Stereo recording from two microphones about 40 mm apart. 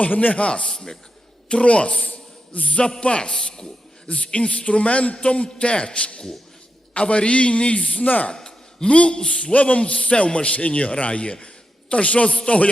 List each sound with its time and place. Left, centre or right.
0.0 s a sound: left
0.3 s a man's voice: left
2.5 s a sound: left
2.9 s a man's voice: left
8.0 s speech: left
8.3 s a man's voice: centre
9.5 s a man's voice: left